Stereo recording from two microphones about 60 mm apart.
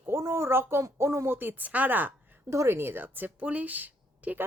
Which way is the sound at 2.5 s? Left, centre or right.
Right.